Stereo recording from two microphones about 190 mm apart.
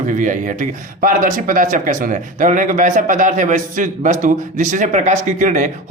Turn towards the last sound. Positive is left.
turn(degrees=-40)  # may be behind; listen again after turning